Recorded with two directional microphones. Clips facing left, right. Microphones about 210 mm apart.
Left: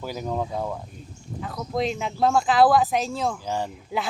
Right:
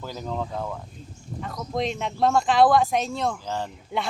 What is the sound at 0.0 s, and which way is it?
Speech, 10° left (ahead or behind).